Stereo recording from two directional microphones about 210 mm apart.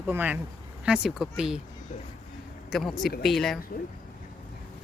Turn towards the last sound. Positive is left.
turn(degrees=0)  # may be behind; listen again after turning